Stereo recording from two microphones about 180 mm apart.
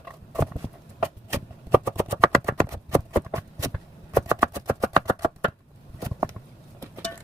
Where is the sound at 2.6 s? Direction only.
15° right (ahead or behind).